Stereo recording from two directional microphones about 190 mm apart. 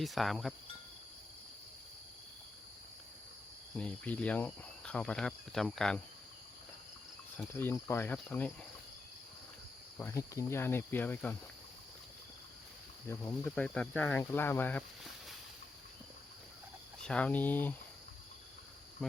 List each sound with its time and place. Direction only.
0.0 s speech: centre (ahead or behind)
3.8 s speech: 5° left (ahead or behind)
7.5 s speech: 15° left (ahead or behind)
10.0 s speech: 15° left (ahead or behind)
13.1 s speech: 10° left (ahead or behind)
17.0 s speech: 5° left (ahead or behind)